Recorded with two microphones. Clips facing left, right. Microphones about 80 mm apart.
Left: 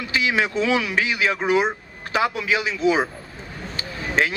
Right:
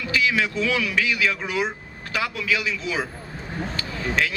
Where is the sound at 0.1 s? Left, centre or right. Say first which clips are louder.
Left 1 dB; left.